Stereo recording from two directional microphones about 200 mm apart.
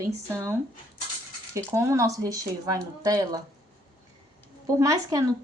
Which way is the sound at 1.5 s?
15° right (ahead or behind).